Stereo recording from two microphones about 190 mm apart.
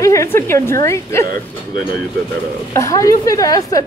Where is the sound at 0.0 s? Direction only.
15° left (ahead or behind).